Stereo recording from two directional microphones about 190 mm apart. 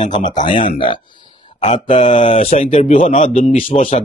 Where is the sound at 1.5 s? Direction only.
40° left (ahead or behind).